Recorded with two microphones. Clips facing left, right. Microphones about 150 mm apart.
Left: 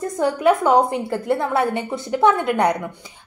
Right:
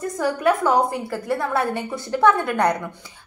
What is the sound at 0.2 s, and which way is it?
A woman's voice, 20° left (ahead or behind).